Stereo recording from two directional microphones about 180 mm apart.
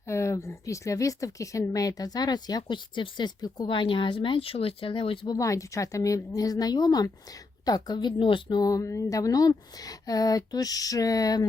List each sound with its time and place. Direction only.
0.1 s speech: 15° left (ahead or behind)